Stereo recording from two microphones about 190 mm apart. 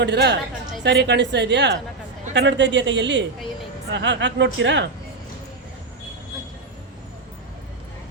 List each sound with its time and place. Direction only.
0.0 s a woman's voice: 60° right (ahead or behind)